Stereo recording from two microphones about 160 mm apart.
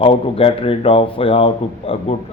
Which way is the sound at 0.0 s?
35° left (ahead or behind).